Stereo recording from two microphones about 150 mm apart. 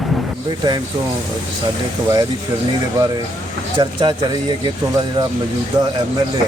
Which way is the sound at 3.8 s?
30° right (ahead or behind).